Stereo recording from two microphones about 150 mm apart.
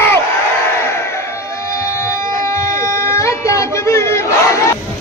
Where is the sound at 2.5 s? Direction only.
20° left (ahead or behind).